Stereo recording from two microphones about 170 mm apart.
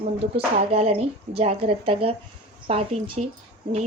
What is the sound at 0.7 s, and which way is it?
Speech, 35° right (ahead or behind).